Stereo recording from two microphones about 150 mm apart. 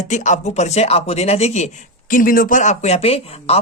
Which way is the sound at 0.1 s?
55° left (ahead or behind).